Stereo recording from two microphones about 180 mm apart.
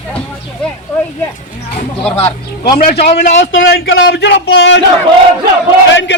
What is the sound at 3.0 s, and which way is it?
Speech, 40° left (ahead or behind).